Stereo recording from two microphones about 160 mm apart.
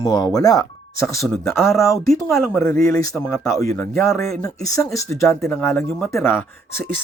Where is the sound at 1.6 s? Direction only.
Centre (ahead or behind).